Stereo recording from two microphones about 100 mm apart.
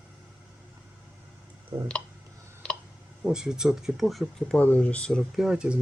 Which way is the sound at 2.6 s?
10° left (ahead or behind).